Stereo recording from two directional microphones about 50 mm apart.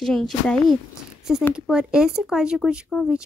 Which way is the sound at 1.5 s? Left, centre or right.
Centre.